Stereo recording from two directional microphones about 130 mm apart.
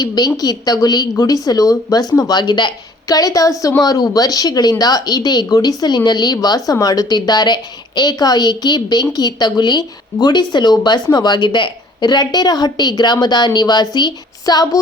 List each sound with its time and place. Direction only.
0.0 s speech: 30° left (ahead or behind)